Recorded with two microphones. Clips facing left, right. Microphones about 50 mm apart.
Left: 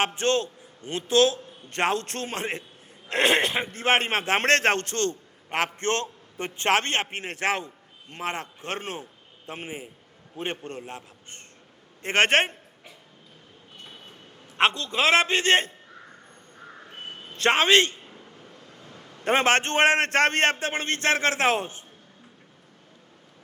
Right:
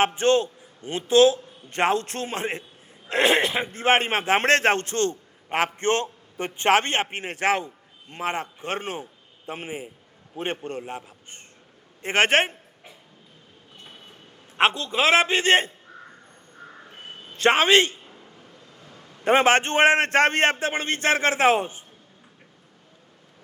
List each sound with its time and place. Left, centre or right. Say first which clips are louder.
0.0 s a man's voice: right 4 dB; right
14.5 s a man's voice: right 2 dB; centre
17.3 s a man's voice: right 2 dB; right
18.0 s a sound: left 1 dB; centre
19.2 s a man's voice: right 3 dB; centre